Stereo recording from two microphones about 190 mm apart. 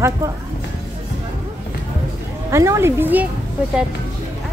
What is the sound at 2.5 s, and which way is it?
Speech, 15° right (ahead or behind).